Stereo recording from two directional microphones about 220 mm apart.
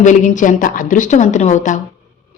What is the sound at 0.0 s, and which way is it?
Speech, 35° left (ahead or behind).